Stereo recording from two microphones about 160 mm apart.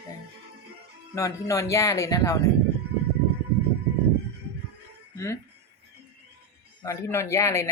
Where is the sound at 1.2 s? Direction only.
20° left (ahead or behind).